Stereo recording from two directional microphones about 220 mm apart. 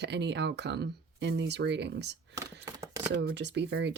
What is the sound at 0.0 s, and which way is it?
Speech, 50° right (ahead or behind).